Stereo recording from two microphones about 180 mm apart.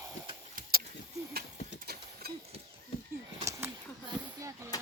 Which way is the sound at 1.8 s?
60° right (ahead or behind).